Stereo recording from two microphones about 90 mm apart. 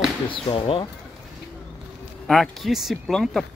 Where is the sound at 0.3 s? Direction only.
85° left.